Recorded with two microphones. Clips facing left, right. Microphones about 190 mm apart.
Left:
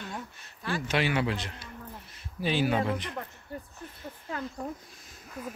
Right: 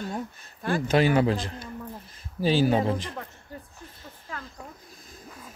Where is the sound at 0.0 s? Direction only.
45° right (ahead or behind).